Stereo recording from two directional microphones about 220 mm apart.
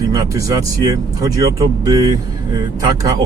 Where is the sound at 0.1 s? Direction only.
15° right (ahead or behind).